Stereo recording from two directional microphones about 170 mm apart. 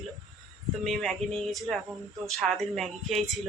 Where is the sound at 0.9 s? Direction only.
5° left (ahead or behind).